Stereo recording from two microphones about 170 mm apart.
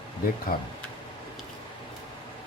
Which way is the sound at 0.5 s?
60° left (ahead or behind).